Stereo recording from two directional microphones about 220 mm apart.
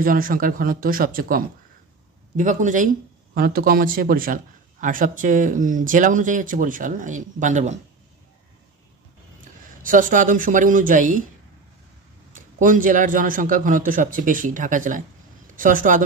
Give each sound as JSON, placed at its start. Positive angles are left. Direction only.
{"t": 0.0, "sound": "a man's voice", "side_deg": -40}
{"t": 9.4, "sound": "speech", "side_deg": -35}
{"t": 12.4, "sound": "a man's voice", "side_deg": -35}